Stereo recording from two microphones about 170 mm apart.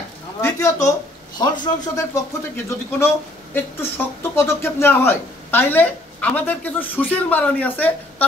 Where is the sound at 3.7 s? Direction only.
15° left (ahead or behind).